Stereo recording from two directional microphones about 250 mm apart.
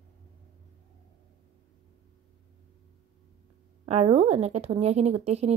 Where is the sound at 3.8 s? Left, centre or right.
Right.